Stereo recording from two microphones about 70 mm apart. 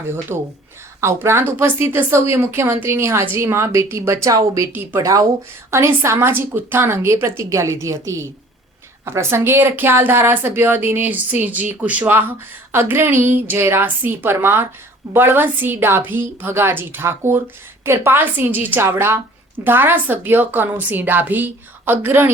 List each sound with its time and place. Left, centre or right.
0.3 s a woman's voice: right
4.7 s a woman's voice: right
4.9 s speech: right
5.7 s a woman's voice: right